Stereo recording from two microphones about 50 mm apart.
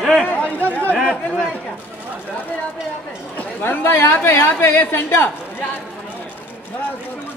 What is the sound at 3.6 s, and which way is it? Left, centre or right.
A woman's voice, left.